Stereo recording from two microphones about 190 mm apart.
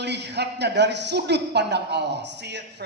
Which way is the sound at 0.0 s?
65° right (ahead or behind).